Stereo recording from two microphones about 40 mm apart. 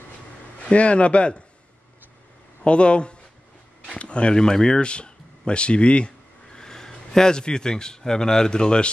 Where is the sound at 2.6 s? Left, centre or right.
Left.